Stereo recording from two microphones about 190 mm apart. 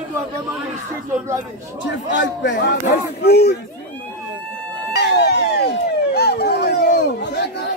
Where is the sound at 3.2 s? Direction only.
55° left (ahead or behind).